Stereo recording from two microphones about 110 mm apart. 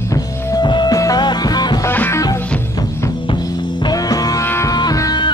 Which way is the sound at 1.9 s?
20° left (ahead or behind).